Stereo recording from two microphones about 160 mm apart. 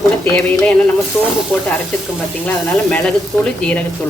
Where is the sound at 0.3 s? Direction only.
10° left (ahead or behind).